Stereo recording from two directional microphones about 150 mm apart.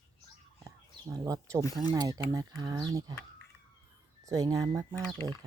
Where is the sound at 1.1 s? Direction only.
20° right (ahead or behind).